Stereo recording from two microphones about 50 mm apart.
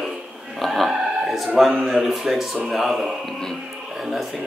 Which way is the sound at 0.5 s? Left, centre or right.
Centre.